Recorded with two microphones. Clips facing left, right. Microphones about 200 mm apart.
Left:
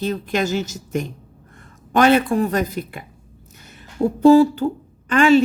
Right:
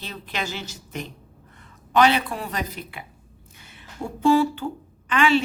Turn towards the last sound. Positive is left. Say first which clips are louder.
# left 7 dB
turn(degrees=45)  # may be behind; listen again after turning